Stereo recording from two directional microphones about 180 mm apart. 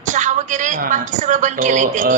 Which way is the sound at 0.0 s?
45° right (ahead or behind).